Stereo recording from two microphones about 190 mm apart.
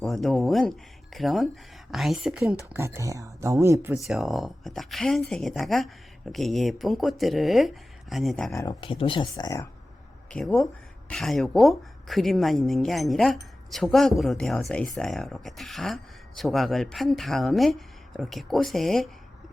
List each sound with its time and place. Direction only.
0.0 s speech: centre (ahead or behind); by 3.9 s 15° right (ahead or behind)
3.9 s speech: centre (ahead or behind)
8.5 s speech: 20° left (ahead or behind)
10.3 s speech: centre (ahead or behind)